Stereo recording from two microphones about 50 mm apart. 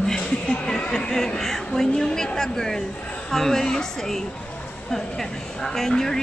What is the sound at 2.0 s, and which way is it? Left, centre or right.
A woman's voice, centre.